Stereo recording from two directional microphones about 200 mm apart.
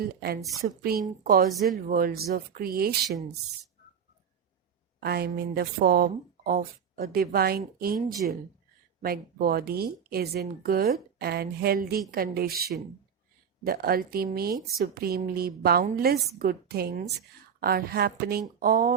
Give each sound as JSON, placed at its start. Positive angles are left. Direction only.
{"t": 0.0, "sound": "speech", "side_deg": -50}
{"t": 1.5, "sound": "speech", "side_deg": 0}
{"t": 1.9, "sound": "speech", "side_deg": -45}
{"t": 4.9, "sound": "speech", "side_deg": -50}